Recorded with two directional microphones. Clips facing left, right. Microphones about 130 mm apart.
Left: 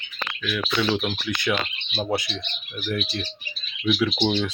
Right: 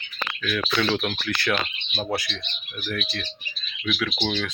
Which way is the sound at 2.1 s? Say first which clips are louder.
Left 3 dB; 20° left (ahead or behind).